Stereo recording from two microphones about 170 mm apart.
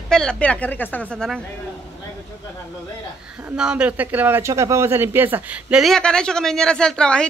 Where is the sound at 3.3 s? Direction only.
5° right (ahead or behind).